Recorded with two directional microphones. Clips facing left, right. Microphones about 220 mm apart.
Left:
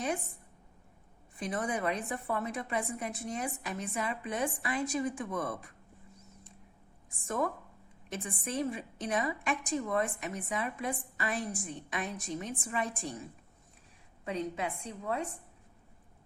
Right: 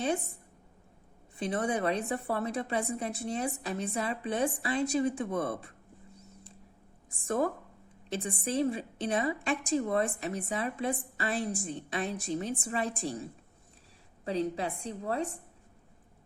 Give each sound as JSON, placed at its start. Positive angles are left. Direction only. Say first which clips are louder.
{"t": 1.4, "sound": "a woman's voice", "louder": "right 3 dB", "side_deg": -30}
{"t": 7.3, "sound": "a woman's voice", "louder": "right 4 dB", "side_deg": -30}
{"t": 14.3, "sound": "a woman's voice", "louder": "right 4 dB", "side_deg": -30}